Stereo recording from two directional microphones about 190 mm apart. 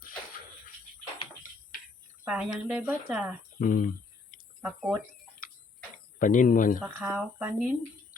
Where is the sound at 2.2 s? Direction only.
5° right (ahead or behind).